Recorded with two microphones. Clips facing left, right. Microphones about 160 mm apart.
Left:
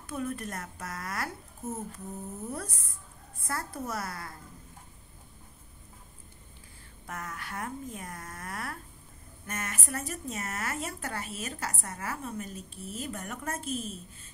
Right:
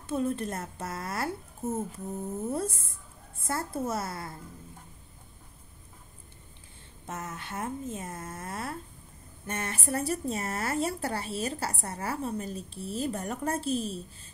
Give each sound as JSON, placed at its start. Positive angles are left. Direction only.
{"t": 0.0, "sound": "a woman's voice", "side_deg": -25}
{"t": 7.1, "sound": "a woman's voice", "side_deg": -25}